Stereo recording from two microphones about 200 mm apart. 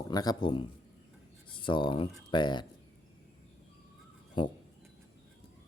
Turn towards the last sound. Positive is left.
turn(degrees=25)  # may be behind; listen again after turning